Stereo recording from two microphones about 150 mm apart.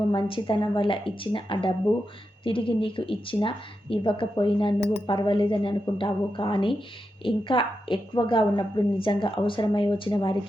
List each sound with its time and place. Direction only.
0.1 s a woman's voice: 35° left (ahead or behind)